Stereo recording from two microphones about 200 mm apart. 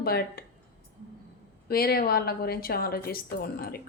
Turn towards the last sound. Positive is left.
turn(degrees=50)  # may be behind; listen again after turning